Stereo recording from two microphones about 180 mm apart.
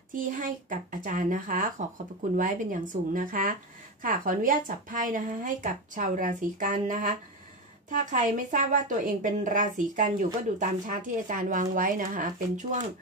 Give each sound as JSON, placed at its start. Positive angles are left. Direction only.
{"t": 0.1, "sound": "speech", "side_deg": -50}